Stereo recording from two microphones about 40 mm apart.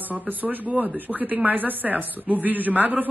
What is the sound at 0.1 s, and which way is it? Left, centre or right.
Speech, right.